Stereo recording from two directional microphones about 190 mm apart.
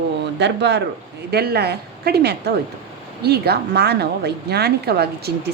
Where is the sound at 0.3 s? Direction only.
65° right (ahead or behind).